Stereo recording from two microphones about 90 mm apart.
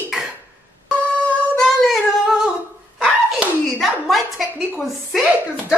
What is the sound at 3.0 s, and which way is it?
Slap, 10° right (ahead or behind).